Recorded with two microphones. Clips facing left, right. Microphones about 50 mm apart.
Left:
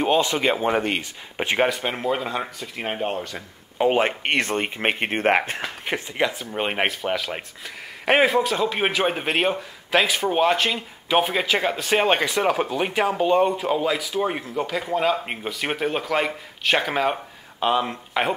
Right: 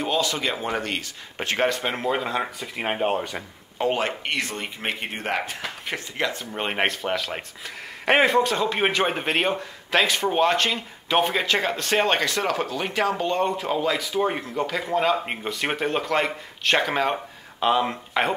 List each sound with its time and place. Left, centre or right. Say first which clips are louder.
0.0 s speech: left 4 dB; left
1.7 s speech: even; centre
2.4 s speech: right 2 dB; centre
3.7 s speech: left 4 dB; centre
4.0 s speech: left 4 dB; left
5.9 s speech: left 4 dB; centre
6.4 s speech: left 1 dB; centre